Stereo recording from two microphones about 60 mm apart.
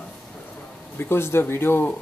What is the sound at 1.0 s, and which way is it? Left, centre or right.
Speech, left.